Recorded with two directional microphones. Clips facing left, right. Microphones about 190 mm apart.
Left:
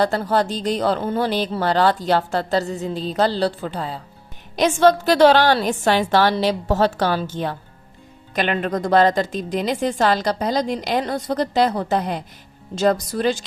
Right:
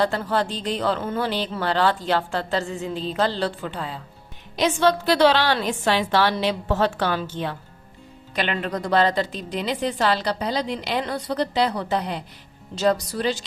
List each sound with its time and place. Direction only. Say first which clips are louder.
0.0 s a woman's voice: left 3 dB; 40° left (ahead or behind)